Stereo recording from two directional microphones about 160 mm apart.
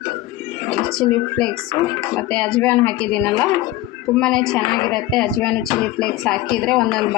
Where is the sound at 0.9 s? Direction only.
5° left (ahead or behind).